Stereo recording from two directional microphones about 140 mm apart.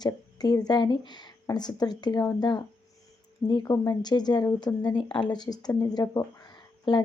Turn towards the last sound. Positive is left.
turn(degrees=30)  # may be behind; listen again after turning